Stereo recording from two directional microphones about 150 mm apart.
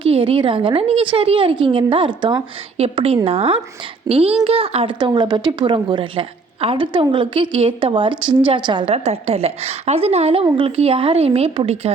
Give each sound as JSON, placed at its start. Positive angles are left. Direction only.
{"t": 0.0, "sound": "a woman's voice", "side_deg": -35}
{"t": 9.0, "sound": "a woman's voice", "side_deg": -45}